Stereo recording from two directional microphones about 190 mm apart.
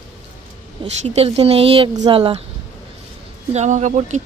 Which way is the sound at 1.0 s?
30° right (ahead or behind).